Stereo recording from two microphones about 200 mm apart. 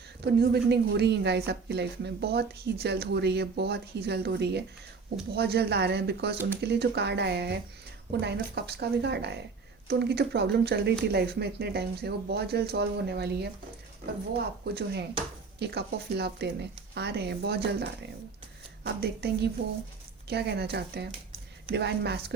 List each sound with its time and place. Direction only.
0.3 s speech: 55° right (ahead or behind)
18.9 s speech: 55° right (ahead or behind)
20.3 s speech: 55° right (ahead or behind)